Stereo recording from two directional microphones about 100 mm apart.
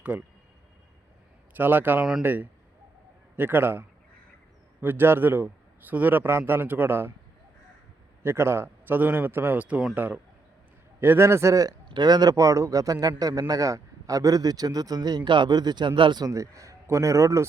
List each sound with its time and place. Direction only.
0.0 s speech: 15° right (ahead or behind)
1.5 s a man's voice: 20° right (ahead or behind)
8.2 s a man's voice: 25° right (ahead or behind)
11.9 s speech: 45° right (ahead or behind)
16.2 s speech: 35° right (ahead or behind)